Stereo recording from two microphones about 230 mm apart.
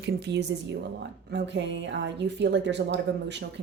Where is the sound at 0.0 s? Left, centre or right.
Right.